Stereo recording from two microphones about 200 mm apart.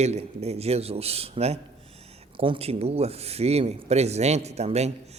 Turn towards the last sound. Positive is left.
turn(degrees=-35)  # may be behind; listen again after turning